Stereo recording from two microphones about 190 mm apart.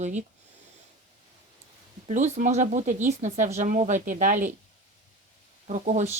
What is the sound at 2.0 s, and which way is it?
Speech, 40° right (ahead or behind).